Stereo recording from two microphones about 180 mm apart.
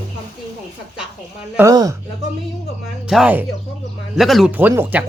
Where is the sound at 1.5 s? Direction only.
20° right (ahead or behind).